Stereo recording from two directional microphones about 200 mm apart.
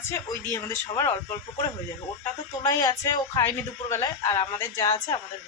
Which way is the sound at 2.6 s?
15° left (ahead or behind).